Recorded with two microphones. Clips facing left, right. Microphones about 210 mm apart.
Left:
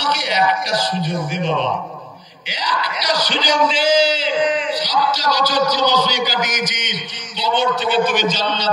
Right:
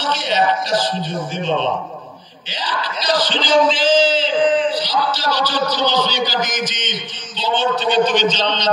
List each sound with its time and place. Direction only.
0.0 s a man's voice: 10° left (ahead or behind)
1.4 s a man's voice: 25° right (ahead or behind)
2.5 s a man's voice: 10° left (ahead or behind)